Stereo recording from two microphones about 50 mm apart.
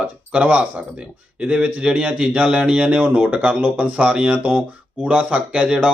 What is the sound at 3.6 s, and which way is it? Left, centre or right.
Speech, right.